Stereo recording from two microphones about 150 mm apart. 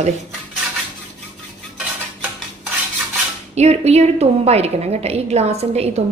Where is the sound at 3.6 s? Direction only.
45° right (ahead or behind).